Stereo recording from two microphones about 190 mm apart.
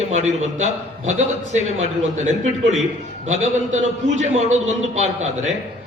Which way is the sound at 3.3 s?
40° right (ahead or behind).